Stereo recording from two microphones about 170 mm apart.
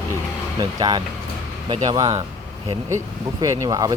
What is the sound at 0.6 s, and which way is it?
Speech, 25° right (ahead or behind).